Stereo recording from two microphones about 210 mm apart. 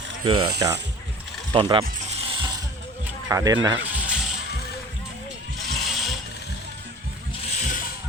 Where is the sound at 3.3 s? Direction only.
15° right (ahead or behind).